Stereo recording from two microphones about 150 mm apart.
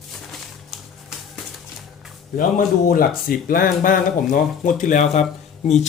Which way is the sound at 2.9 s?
75° left (ahead or behind).